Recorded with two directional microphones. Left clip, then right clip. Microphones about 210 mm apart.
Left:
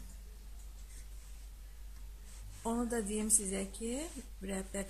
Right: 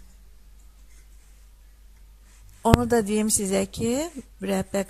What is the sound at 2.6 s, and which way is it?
A woman's voice, 40° right (ahead or behind).